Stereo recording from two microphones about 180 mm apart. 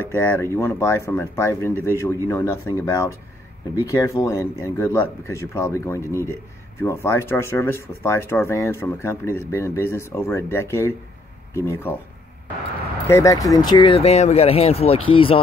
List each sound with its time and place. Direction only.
0.1 s speech: 15° left (ahead or behind)
13.0 s speech: 15° left (ahead or behind)